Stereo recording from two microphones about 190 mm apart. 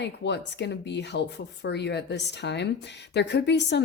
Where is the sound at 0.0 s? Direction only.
65° left (ahead or behind).